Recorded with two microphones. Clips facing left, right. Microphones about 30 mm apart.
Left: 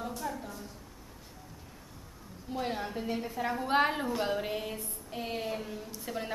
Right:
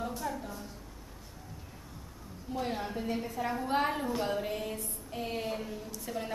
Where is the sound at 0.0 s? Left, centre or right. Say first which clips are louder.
Right 1 dB; centre.